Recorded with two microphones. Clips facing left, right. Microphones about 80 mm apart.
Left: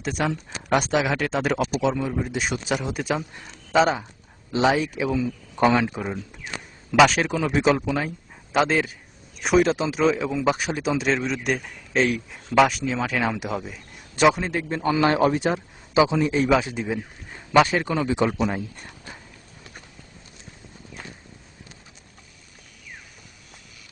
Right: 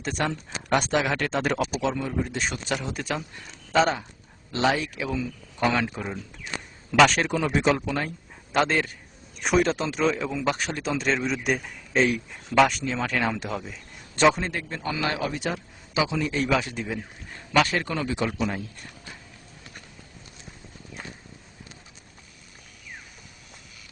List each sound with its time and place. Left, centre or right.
0.0 s speech: centre
14.6 s a man's voice: left